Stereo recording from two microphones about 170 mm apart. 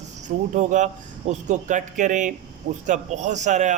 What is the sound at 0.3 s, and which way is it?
A man's voice, 45° right (ahead or behind).